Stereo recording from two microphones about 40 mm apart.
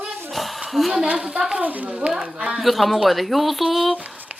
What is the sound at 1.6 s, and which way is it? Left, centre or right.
Speech, right.